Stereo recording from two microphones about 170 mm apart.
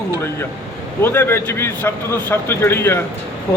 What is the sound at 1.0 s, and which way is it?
A man's voice, 10° left (ahead or behind).